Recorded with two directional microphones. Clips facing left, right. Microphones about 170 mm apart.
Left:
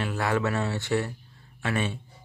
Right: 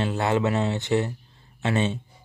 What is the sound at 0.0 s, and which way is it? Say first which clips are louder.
Speech: right 3 dB; 20° right (ahead or behind).